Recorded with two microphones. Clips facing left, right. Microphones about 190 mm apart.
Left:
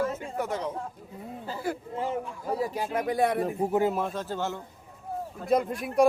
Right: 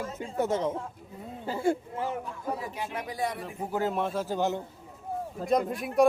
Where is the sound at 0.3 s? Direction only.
25° right (ahead or behind).